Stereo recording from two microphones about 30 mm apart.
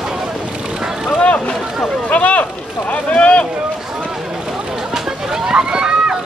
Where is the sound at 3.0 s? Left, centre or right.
Left.